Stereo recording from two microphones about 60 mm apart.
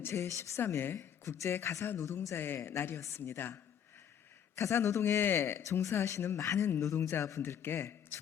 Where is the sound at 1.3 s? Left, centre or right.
Left.